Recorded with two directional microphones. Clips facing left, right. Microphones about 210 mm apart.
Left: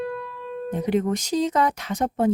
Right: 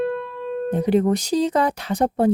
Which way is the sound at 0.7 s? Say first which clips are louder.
Right 4 dB; 35° right (ahead or behind).